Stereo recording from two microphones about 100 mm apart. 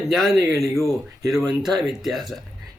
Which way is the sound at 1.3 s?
5° right (ahead or behind).